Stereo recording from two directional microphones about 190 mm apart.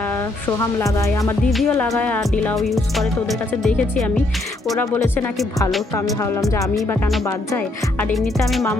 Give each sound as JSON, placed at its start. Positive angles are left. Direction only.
{"t": 0.4, "sound": "music", "side_deg": 15}
{"t": 1.5, "sound": "music", "side_deg": 0}
{"t": 8.1, "sound": "music", "side_deg": 0}